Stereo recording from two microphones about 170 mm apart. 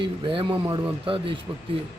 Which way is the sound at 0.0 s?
30° right (ahead or behind).